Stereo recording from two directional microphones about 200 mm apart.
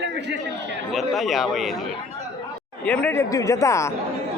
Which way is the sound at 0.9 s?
Centre (ahead or behind).